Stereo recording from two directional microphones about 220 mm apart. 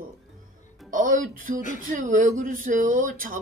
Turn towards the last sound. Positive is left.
turn(degrees=-40)  # may be behind; listen again after turning